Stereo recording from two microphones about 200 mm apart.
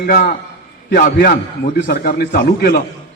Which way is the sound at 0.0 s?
50° left (ahead or behind).